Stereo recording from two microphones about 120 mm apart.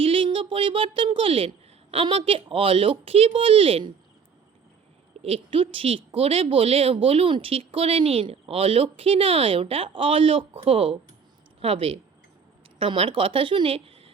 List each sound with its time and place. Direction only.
0.0 s a woman's voice: 45° right (ahead or behind)
5.2 s speech: 55° right (ahead or behind)